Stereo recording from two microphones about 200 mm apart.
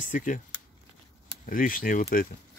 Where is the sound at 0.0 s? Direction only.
40° left (ahead or behind).